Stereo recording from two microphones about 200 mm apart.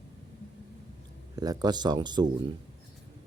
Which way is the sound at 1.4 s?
20° right (ahead or behind).